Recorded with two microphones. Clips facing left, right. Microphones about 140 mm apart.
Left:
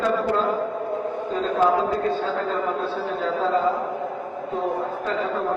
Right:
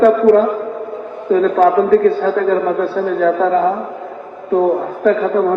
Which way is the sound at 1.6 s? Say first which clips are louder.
Right 9 dB; 65° right (ahead or behind).